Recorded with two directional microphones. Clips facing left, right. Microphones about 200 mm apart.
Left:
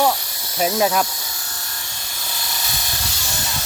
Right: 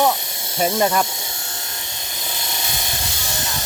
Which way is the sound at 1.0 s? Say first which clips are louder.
Right 1 dB; 25° right (ahead or behind).